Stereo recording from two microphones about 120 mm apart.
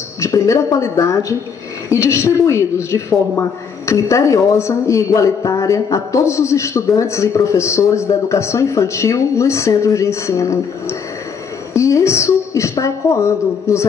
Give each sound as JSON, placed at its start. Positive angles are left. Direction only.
{"t": 0.2, "sound": "a woman's voice", "side_deg": 25}